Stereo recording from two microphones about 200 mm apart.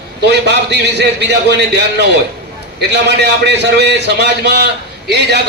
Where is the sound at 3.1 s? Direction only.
60° right (ahead or behind).